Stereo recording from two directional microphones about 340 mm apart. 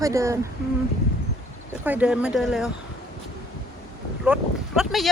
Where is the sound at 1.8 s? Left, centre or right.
Centre.